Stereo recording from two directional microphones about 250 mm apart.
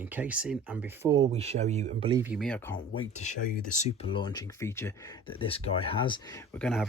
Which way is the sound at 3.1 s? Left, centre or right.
Left.